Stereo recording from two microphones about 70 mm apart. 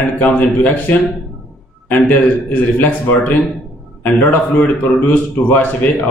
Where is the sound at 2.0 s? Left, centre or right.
Left.